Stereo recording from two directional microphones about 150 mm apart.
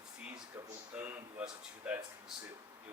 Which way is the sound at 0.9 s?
15° right (ahead or behind).